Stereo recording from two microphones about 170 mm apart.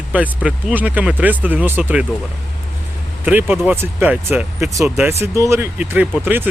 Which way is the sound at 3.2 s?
10° right (ahead or behind).